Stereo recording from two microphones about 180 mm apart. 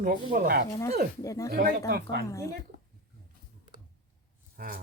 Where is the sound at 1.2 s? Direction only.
20° left (ahead or behind).